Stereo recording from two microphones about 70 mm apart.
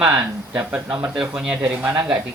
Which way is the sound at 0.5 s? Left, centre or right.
Right.